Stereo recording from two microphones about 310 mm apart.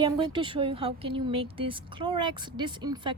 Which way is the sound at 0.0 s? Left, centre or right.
Centre.